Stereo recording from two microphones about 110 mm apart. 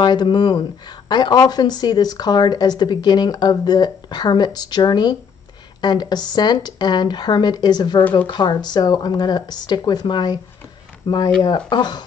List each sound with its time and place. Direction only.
0.0 s speech: 40° left (ahead or behind)